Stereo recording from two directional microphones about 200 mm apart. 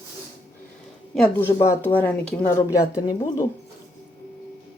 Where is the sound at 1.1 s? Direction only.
5° left (ahead or behind).